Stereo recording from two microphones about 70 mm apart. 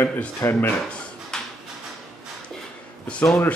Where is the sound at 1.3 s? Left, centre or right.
Centre.